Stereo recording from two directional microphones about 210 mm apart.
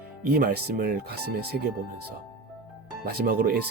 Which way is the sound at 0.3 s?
45° right (ahead or behind).